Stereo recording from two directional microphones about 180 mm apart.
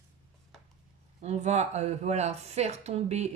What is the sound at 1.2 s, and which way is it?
Speech, 40° right (ahead or behind).